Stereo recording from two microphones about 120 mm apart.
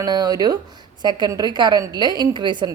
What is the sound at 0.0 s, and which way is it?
Speech, 35° right (ahead or behind).